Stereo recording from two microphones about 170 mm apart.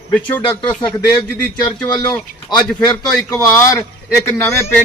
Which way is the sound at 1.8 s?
25° left (ahead or behind).